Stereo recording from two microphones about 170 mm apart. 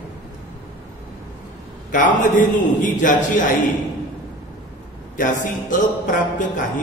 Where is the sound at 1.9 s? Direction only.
50° left (ahead or behind).